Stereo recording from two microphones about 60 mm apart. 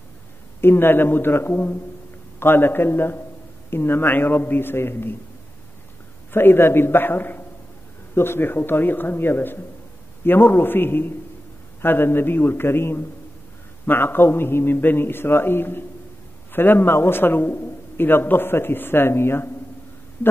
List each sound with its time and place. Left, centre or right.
0.6 s a man's voice: left
6.3 s a man's voice: left